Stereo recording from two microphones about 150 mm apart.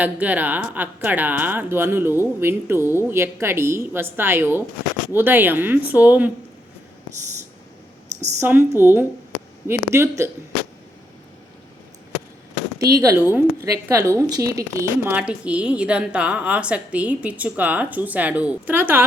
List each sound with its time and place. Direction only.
0.0 s speech: 10° right (ahead or behind)
8.4 s speech: 15° right (ahead or behind)
12.9 s a woman's voice: 20° right (ahead or behind)